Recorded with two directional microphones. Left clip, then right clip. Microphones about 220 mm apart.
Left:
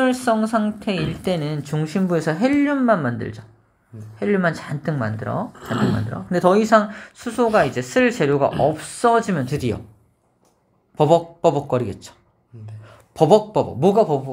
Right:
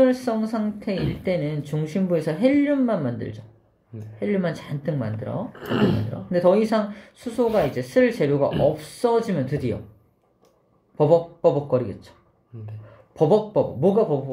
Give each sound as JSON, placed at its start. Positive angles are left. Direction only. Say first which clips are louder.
{"t": 0.0, "sound": "speech", "louder": "left 1 dB", "side_deg": 25}
{"t": 5.6, "sound": "speech", "louder": "right 4 dB", "side_deg": -25}
{"t": 6.3, "sound": "speech", "louder": "left 4 dB", "side_deg": 25}
{"t": 11.0, "sound": "speech", "louder": "left 2 dB", "side_deg": 30}
{"t": 13.1, "sound": "speech", "louder": "left 4 dB", "side_deg": 30}